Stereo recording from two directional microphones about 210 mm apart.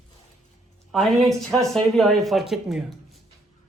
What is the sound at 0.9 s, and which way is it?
Speech, centre (ahead or behind).